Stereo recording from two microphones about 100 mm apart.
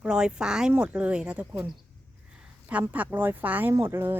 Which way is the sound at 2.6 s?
15° right (ahead or behind).